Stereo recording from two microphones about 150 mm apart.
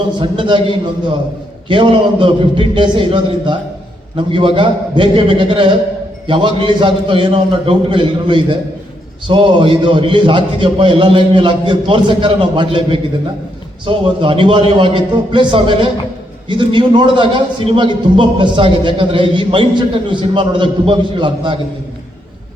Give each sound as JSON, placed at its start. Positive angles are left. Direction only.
{"t": 0.2, "sound": "a man's voice", "side_deg": -35}
{"t": 1.6, "sound": "a man's voice", "side_deg": -35}